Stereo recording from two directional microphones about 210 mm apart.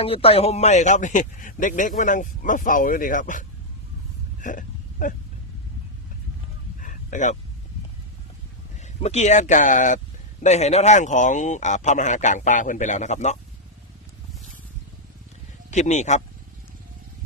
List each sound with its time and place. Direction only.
0.0 s speech: 25° left (ahead or behind)
4.4 s a sound: 40° left (ahead or behind)
6.8 s vehicle: 35° left (ahead or behind)
8.8 s speech: 30° left (ahead or behind)
15.7 s speech: 35° left (ahead or behind)